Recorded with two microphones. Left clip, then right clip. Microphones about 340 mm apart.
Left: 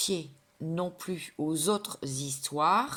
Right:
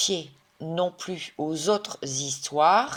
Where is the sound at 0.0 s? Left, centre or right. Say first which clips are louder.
Right 6 dB; centre.